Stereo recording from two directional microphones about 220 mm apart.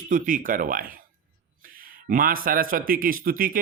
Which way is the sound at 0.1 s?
40° right (ahead or behind).